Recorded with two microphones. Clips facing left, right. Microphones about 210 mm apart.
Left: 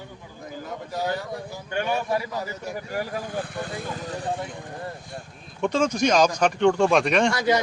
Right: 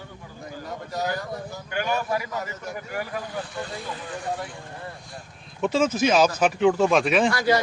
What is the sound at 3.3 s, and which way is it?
Speech, 55° left (ahead or behind).